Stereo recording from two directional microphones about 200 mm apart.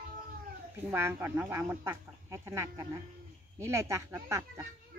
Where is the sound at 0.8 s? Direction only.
10° right (ahead or behind).